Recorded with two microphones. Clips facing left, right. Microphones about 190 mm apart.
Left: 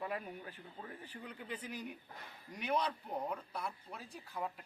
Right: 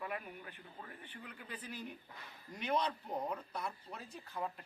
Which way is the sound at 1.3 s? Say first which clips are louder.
Left 6 dB; 20° left (ahead or behind).